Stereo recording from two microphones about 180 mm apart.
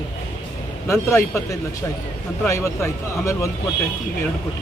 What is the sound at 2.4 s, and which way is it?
Speech, 15° left (ahead or behind).